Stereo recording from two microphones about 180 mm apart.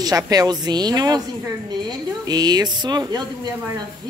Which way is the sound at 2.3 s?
20° right (ahead or behind).